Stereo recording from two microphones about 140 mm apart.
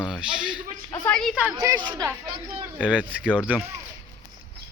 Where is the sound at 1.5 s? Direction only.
25° right (ahead or behind).